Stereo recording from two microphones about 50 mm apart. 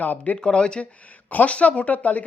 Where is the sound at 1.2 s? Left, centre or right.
Left.